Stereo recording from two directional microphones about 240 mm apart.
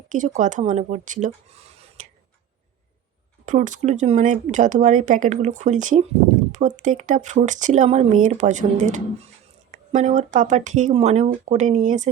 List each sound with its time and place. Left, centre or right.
0.1 s speech: right
3.4 s speech: right